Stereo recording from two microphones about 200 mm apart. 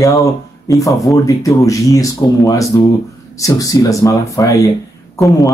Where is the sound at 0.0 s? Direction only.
15° left (ahead or behind).